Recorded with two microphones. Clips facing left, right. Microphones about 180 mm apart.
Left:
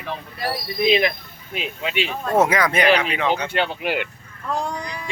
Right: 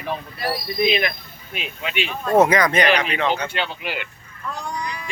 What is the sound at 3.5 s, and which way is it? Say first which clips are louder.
Speech: left 5 dB; 50° left (ahead or behind).